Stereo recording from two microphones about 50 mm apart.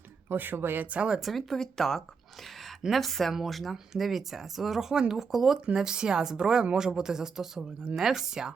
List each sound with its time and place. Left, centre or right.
0.3 s speech: right
0.9 s speech: right
1.2 s speech: centre